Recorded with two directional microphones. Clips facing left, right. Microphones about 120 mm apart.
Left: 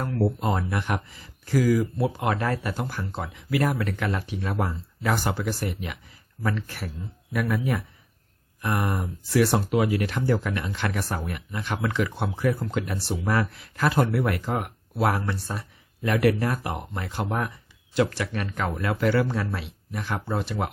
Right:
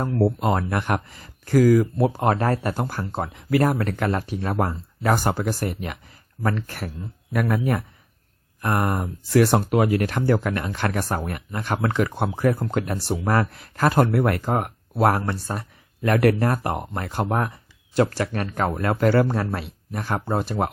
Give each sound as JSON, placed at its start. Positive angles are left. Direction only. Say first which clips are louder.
{"t": 0.3, "sound": "speech", "louder": "right 4 dB", "side_deg": -65}